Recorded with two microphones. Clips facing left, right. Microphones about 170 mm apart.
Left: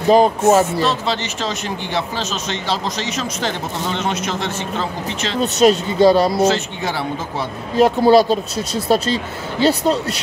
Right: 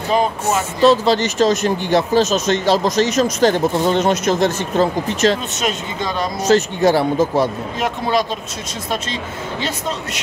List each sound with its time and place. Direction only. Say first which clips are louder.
0.1 s speech: left 6 dB; 35° left (ahead or behind)
0.8 s speech: right 7 dB; 40° right (ahead or behind)
5.4 s speech: left 9 dB; 35° left (ahead or behind)
6.4 s speech: right 4 dB; 40° right (ahead or behind)
7.7 s speech: left 13 dB; 35° left (ahead or behind)